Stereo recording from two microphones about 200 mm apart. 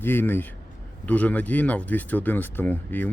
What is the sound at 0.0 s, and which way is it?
Speech, 10° left (ahead or behind).